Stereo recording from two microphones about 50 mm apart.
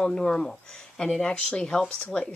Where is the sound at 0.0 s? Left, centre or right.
Centre.